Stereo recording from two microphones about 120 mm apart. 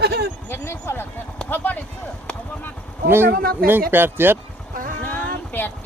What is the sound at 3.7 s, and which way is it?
Speech, 15° right (ahead or behind).